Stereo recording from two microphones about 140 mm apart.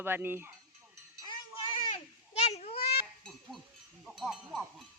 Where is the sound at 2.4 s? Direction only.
50° left (ahead or behind).